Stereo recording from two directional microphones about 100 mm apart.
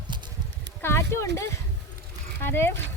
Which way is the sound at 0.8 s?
25° left (ahead or behind).